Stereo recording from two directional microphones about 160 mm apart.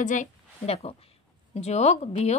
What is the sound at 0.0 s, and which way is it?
A woman's voice, 50° left (ahead or behind).